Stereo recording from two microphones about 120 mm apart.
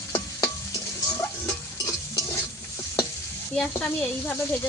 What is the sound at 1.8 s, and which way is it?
Stir, 25° left (ahead or behind).